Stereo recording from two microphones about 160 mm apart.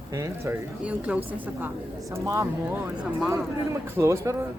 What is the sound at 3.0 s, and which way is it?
Speech, 5° right (ahead or behind).